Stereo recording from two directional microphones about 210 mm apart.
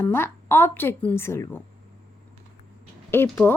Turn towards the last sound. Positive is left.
turn(degrees=10)  # may be behind; listen again after turning